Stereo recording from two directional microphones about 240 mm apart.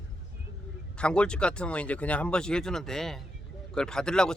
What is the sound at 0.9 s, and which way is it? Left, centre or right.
Speech, centre.